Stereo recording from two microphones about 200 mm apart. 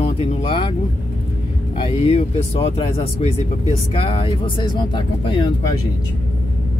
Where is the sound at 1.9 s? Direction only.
30° left (ahead or behind).